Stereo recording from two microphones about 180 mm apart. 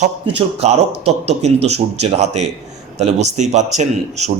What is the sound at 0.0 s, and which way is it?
Speech, 35° right (ahead or behind).